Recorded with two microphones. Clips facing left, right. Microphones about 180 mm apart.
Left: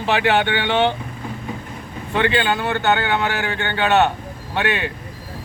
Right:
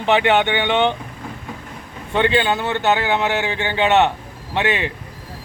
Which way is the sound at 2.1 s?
25° right (ahead or behind).